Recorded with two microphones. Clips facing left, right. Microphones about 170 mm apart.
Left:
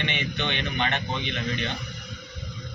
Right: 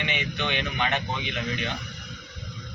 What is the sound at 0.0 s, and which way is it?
Speech, 5° right (ahead or behind).